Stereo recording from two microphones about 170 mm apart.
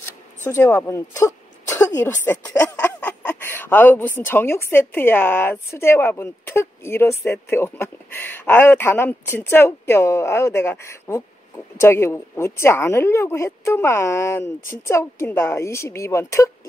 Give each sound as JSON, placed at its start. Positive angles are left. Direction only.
{"t": 0.0, "sound": "speech", "side_deg": 15}